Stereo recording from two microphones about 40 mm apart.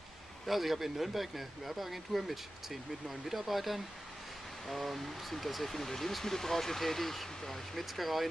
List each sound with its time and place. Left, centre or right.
0.5 s speech: centre